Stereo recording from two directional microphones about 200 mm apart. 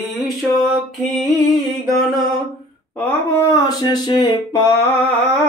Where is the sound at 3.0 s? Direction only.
10° left (ahead or behind).